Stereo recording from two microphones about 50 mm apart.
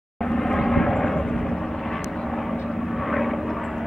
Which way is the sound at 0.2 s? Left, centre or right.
Centre.